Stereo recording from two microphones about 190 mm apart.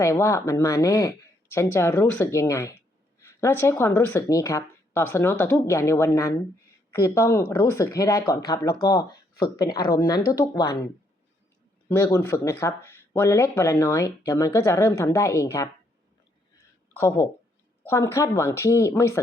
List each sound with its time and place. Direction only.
0.0 s speech: 15° left (ahead or behind)
11.9 s speech: 15° left (ahead or behind)
17.0 s speech: 15° left (ahead or behind)